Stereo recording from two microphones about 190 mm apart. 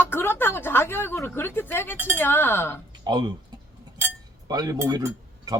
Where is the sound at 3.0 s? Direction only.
20° right (ahead or behind).